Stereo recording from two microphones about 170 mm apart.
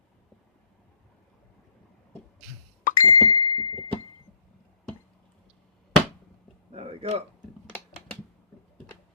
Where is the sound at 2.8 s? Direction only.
50° left (ahead or behind).